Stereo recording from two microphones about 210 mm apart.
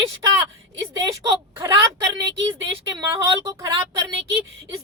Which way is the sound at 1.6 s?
15° right (ahead or behind).